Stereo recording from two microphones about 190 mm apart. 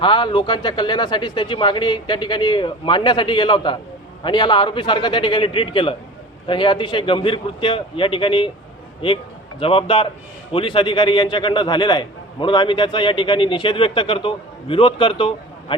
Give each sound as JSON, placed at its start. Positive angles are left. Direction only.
{"t": 0.0, "sound": "a man's voice", "side_deg": 25}